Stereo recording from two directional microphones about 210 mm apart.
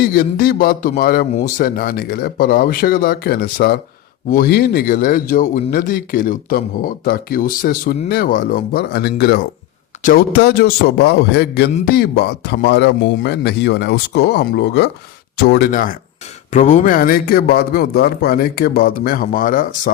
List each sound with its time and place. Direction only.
0.1 s a man's voice: 45° left (ahead or behind)